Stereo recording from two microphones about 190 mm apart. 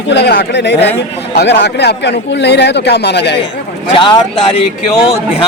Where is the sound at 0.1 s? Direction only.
60° left (ahead or behind).